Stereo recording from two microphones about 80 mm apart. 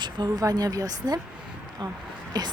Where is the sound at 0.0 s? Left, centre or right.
Right.